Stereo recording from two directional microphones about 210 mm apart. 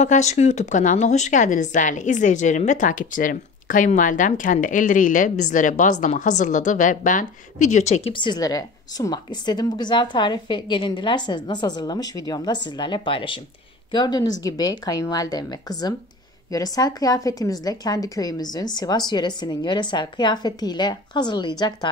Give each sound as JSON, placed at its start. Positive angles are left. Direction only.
{"t": 0.0, "sound": "a woman's voice", "side_deg": 35}